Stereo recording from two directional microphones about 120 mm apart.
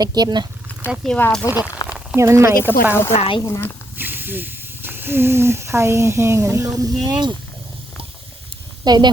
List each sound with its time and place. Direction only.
0.0 s speech: 35° right (ahead or behind)
1.0 s speech: 5° left (ahead or behind)
1.5 s speech: 15° right (ahead or behind)
3.1 s speech: 60° left (ahead or behind)
3.4 s speech: 25° left (ahead or behind)
3.9 s speech: 15° right (ahead or behind); by 7.3 s 35° right (ahead or behind)
8.8 s speech: 35° right (ahead or behind)